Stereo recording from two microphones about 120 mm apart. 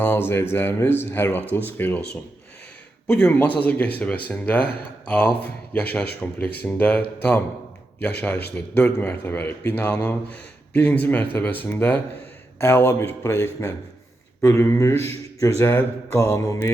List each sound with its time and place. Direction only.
0.0 s speech: 15° left (ahead or behind)
3.2 s speech: 15° left (ahead or behind)